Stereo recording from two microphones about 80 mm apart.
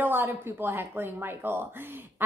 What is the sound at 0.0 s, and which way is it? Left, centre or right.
Speech, right.